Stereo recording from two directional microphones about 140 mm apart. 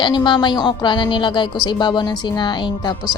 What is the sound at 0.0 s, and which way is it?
A woman's voice, 35° left (ahead or behind).